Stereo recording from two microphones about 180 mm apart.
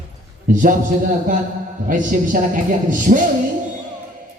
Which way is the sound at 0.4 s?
45° right (ahead or behind).